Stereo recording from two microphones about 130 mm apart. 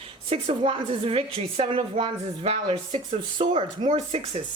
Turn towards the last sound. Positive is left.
turn(degrees=-55)  # may be behind; listen again after turning